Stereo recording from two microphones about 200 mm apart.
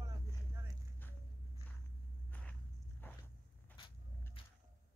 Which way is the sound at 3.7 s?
25° left (ahead or behind).